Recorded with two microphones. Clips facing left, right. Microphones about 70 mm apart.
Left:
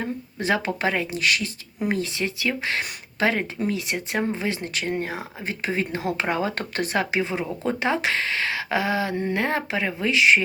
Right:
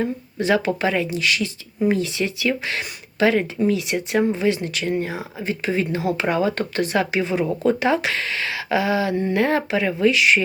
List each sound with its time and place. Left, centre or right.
0.3 s speech: left